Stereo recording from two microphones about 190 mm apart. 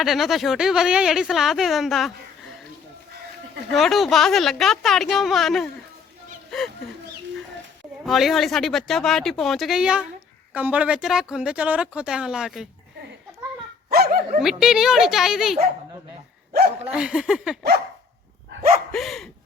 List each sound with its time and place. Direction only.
0.0 s speech: centre (ahead or behind)
3.7 s speech: centre (ahead or behind)
8.0 s speech: centre (ahead or behind)
13.9 s dog: 55° right (ahead or behind)
14.4 s speech: centre (ahead or behind)
16.5 s speech: 55° right (ahead or behind)
16.9 s speech: 5° right (ahead or behind)
18.9 s speech: centre (ahead or behind)